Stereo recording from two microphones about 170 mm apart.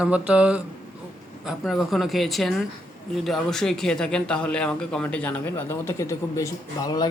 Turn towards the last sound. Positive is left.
turn(degrees=20)  # may be behind; listen again after turning